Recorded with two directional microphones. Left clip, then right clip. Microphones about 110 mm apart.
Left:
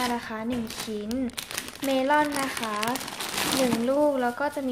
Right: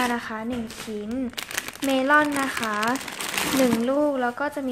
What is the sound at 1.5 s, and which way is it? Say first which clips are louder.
Speech: right 2 dB; 35° right (ahead or behind).